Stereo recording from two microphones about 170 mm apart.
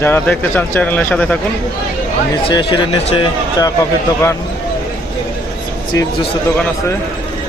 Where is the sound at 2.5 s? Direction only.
25° left (ahead or behind).